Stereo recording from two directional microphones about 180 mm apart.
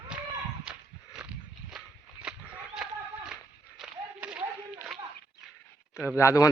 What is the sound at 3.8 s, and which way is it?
Clapping, 5° right (ahead or behind).